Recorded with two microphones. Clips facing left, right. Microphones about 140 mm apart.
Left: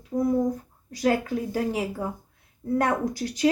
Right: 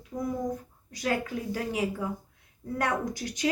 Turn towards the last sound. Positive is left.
turn(degrees=35)  # may be behind; listen again after turning